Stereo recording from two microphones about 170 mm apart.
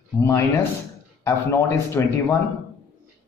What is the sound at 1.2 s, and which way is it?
Speech, 15° left (ahead or behind).